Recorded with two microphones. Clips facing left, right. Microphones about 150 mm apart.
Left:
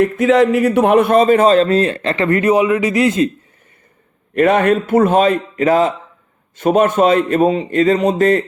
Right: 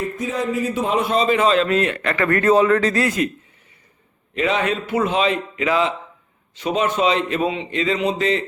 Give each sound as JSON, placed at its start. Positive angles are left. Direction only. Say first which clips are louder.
{"t": 0.0, "sound": "a man's voice", "louder": "left 12 dB", "side_deg": 80}
{"t": 4.4, "sound": "a man's voice", "louder": "left 8 dB", "side_deg": 55}